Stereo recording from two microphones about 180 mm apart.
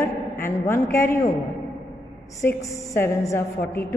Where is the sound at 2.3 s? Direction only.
15° left (ahead or behind).